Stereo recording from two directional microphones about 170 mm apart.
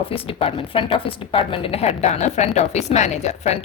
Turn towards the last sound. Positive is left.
turn(degrees=40)  # may be behind; listen again after turning